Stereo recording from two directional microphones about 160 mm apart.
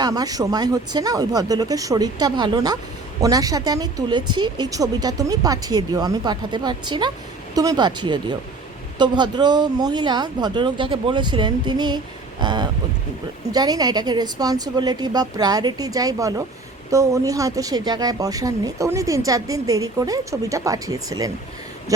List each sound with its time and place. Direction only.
0.0 s speech: 25° right (ahead or behind)